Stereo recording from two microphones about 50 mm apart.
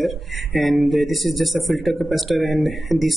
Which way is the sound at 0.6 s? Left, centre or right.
Centre.